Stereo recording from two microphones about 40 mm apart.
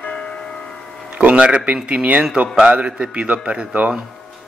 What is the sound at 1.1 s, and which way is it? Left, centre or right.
A man's voice, right.